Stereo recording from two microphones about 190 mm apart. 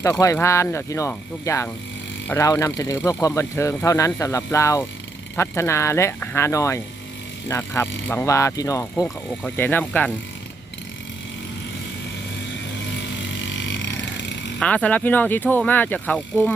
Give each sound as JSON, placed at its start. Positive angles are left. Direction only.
{"t": 0.0, "sound": "speech", "side_deg": 15}
{"t": 13.4, "sound": "burping", "side_deg": 70}
{"t": 14.6, "sound": "speech", "side_deg": 5}